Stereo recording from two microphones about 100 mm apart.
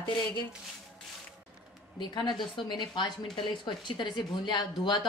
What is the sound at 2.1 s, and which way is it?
A woman's voice, 45° left (ahead or behind).